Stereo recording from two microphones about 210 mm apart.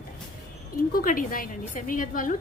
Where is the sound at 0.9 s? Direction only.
40° left (ahead or behind).